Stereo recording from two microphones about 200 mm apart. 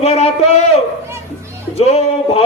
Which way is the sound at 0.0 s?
30° left (ahead or behind).